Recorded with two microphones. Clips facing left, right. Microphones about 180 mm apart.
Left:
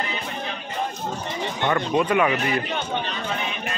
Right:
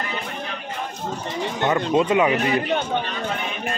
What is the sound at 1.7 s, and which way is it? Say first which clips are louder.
Speech: right 2 dB; 20° right (ahead or behind).